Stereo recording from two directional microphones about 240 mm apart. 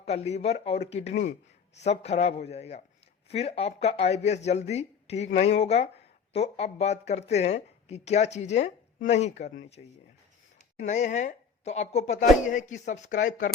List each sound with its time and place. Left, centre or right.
0.0 s speech: left